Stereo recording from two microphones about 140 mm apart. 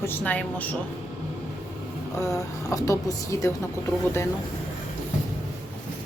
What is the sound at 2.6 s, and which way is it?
Speech, 20° left (ahead or behind).